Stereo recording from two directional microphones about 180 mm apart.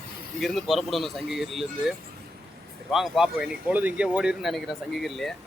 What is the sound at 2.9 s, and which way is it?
Speech, centre (ahead or behind).